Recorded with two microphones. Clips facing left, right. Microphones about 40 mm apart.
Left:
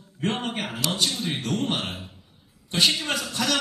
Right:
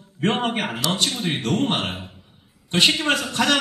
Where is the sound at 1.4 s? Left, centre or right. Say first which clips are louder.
Right 6 dB; right.